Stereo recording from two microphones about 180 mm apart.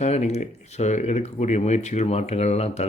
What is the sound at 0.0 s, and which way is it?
Speech, 40° left (ahead or behind).